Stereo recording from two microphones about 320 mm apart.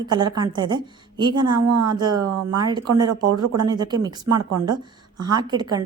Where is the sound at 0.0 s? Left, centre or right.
Centre.